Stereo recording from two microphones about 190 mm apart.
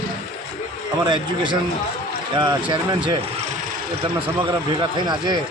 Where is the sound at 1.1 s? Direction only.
25° right (ahead or behind).